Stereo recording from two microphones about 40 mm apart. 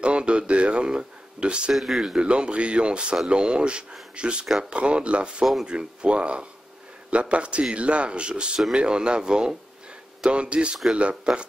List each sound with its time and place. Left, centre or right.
0.0 s a sound: right
1.7 s speech: centre
2.0 s speech: right
5.4 s speech: centre
5.7 s speech: right